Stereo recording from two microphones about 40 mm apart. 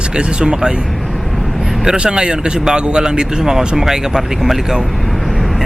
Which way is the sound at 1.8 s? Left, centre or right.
Centre.